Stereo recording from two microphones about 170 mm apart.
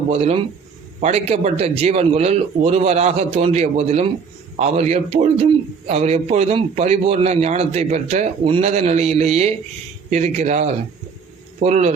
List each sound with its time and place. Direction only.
0.1 s a man's voice: 35° right (ahead or behind)